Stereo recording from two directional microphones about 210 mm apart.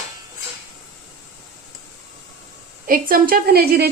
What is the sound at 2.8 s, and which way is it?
A woman's voice, 40° right (ahead or behind).